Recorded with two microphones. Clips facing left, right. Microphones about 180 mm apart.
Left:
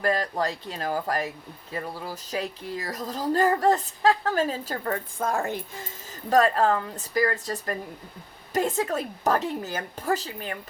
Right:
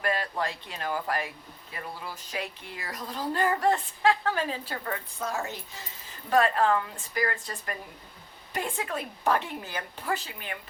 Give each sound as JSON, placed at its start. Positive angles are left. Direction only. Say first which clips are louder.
{"t": 0.0, "sound": "speech", "louder": "left 4 dB", "side_deg": 40}
{"t": 6.3, "sound": "speech", "louder": "left 3 dB", "side_deg": 40}